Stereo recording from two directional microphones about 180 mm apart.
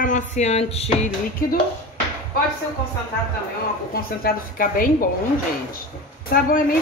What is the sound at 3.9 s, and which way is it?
Speech, 55° left (ahead or behind).